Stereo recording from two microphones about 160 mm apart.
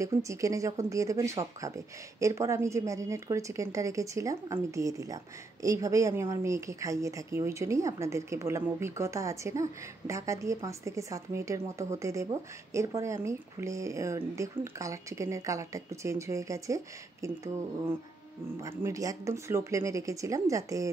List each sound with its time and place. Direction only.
0.0 s a woman's voice: 20° right (ahead or behind)
18.6 s a woman's voice: 20° right (ahead or behind)